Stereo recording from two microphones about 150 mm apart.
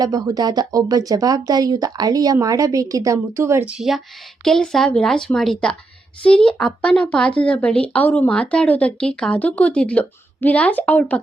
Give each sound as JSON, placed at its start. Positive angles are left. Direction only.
{"t": 0.0, "sound": "speech", "side_deg": -25}
{"t": 3.8, "sound": "a woman's voice", "side_deg": 0}